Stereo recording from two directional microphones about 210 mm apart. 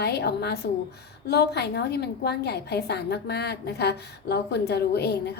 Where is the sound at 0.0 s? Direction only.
50° left (ahead or behind).